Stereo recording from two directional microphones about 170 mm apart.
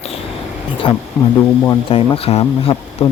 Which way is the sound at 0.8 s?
30° left (ahead or behind).